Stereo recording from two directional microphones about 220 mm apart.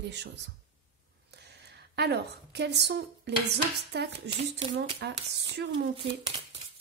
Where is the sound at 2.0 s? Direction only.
50° right (ahead or behind).